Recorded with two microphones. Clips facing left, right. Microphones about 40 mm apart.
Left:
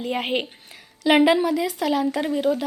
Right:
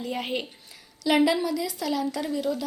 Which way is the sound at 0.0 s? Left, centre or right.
Left.